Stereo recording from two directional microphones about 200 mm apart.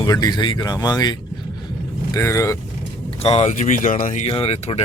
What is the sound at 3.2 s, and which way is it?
Speech, 30° left (ahead or behind).